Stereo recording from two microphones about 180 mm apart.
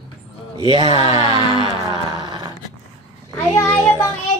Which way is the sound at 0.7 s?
30° right (ahead or behind).